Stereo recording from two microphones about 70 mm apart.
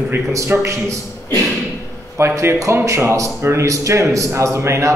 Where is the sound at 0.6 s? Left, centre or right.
Right.